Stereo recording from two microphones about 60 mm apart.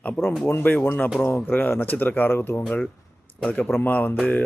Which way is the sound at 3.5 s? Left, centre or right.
Left.